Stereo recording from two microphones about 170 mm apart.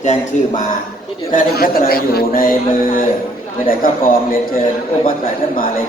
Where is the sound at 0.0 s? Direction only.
45° left (ahead or behind).